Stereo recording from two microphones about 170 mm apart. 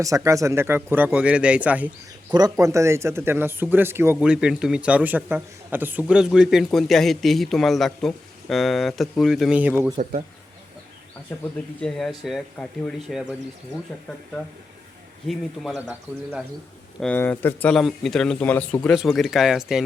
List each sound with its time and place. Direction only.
0.0 s a man's voice: 20° right (ahead or behind)
2.3 s speech: 20° right (ahead or behind)
10.0 s speech: 45° right (ahead or behind)
11.8 s speech: 5° left (ahead or behind)
14.4 s speech: 10° left (ahead or behind)
17.0 s speech: 10° left (ahead or behind)